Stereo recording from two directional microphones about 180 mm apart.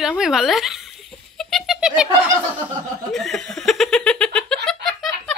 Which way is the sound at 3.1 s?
Centre (ahead or behind).